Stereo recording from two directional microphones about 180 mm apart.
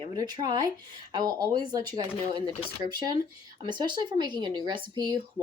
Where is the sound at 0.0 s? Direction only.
25° right (ahead or behind).